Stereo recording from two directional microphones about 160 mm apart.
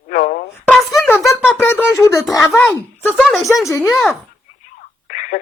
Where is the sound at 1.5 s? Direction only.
15° left (ahead or behind).